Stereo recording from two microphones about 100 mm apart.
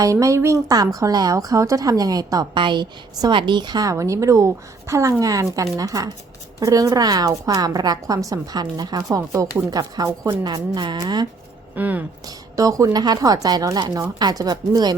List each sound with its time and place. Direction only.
0.0 s a woman's voice: 30° right (ahead or behind)
10.4 s speech: 50° right (ahead or behind)
11.7 s speech: 15° right (ahead or behind)
12.2 s a woman's voice: 35° right (ahead or behind)